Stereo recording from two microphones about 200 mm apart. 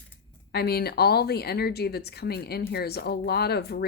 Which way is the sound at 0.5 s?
55° left (ahead or behind).